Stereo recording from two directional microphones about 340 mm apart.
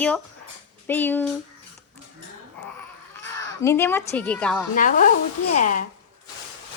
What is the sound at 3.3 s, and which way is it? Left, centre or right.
Speech, centre.